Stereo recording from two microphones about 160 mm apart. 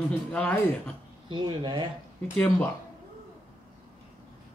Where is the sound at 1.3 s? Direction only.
30° right (ahead or behind).